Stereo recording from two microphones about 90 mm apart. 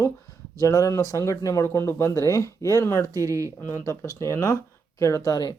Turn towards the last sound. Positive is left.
turn(degrees=45)  # may be behind; listen again after turning